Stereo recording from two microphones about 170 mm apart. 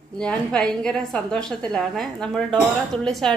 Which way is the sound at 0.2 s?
5° left (ahead or behind).